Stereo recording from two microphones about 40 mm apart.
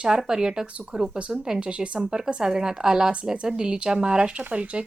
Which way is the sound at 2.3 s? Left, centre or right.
Centre.